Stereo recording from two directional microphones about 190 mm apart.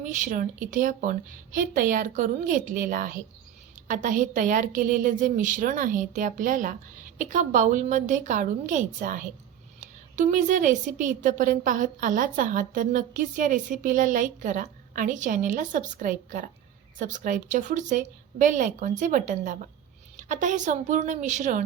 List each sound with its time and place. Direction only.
0.0 s a woman's voice: 40° right (ahead or behind)